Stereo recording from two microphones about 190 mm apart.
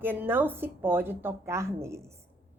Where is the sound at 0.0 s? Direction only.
10° right (ahead or behind).